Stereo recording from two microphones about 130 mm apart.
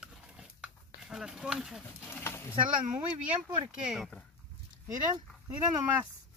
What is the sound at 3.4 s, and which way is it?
Speech, 35° right (ahead or behind).